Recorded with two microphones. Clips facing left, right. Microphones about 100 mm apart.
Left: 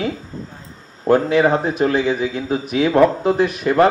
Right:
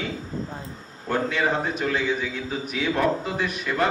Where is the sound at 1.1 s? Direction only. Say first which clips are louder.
Left 10 dB; 60° left (ahead or behind).